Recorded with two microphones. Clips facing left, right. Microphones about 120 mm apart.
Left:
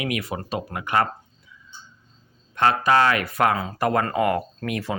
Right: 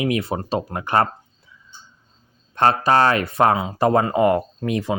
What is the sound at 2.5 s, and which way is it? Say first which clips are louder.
Speech: right 2 dB; 35° right (ahead or behind).